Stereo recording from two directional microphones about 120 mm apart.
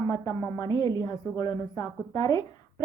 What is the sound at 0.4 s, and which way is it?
A woman's voice, 25° left (ahead or behind).